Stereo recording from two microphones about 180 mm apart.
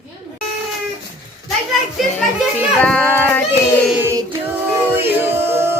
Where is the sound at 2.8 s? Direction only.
10° left (ahead or behind).